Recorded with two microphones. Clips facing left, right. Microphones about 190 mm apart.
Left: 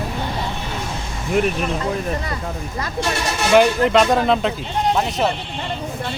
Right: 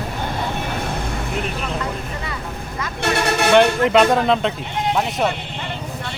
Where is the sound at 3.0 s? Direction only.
60° right (ahead or behind).